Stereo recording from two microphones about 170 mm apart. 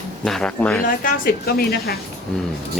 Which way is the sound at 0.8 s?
60° left (ahead or behind).